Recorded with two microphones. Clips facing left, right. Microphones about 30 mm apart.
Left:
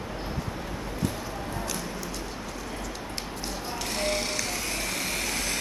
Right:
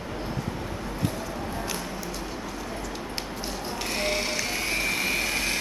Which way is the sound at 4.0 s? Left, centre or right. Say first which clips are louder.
Right 1 dB; centre.